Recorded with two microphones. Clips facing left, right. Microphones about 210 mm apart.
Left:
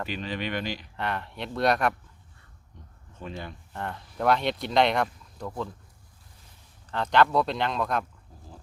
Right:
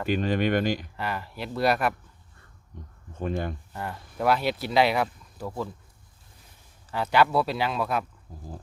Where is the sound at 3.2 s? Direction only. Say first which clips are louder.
Right 8 dB; 50° right (ahead or behind).